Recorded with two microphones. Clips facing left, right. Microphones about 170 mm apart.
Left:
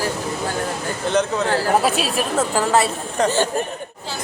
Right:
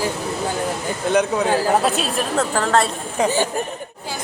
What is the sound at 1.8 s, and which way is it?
A man's voice, centre (ahead or behind).